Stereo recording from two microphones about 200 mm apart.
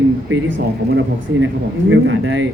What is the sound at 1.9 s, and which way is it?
Speech, 75° right (ahead or behind).